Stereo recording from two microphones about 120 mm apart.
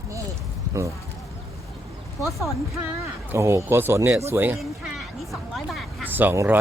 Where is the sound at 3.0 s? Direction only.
20° right (ahead or behind).